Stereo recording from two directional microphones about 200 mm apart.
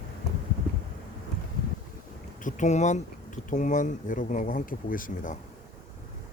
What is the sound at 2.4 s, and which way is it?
Speech, 35° left (ahead or behind).